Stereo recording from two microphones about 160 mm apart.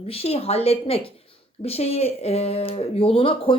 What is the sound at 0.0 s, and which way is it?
A woman's voice, 40° left (ahead or behind).